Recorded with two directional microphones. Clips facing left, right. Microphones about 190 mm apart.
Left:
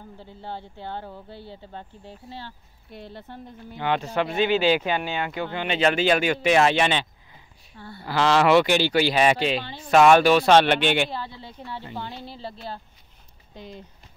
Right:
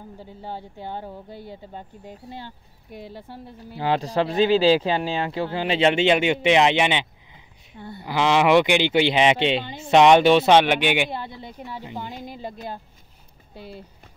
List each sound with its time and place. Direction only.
0.2 s speech: 10° right (ahead or behind)
3.7 s speech: 35° right (ahead or behind); by 12.5 s 15° right (ahead or behind)
13.6 s speech: 10° right (ahead or behind)